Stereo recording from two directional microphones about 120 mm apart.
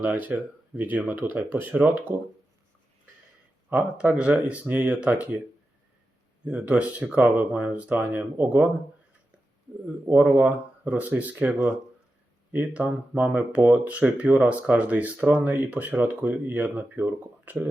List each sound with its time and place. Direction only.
0.0 s speech: 15° right (ahead or behind)
3.7 s speech: 15° right (ahead or behind)
6.4 s speech: 10° right (ahead or behind)
10.1 s speech: 15° right (ahead or behind)